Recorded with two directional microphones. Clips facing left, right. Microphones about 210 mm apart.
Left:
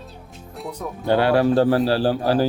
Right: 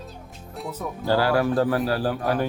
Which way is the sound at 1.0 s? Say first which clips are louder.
Left 4 dB; 20° left (ahead or behind).